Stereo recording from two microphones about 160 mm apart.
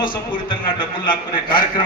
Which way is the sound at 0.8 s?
30° left (ahead or behind).